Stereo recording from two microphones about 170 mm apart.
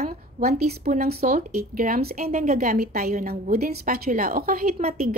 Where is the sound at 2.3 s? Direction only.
45° right (ahead or behind); by 4.7 s 60° right (ahead or behind).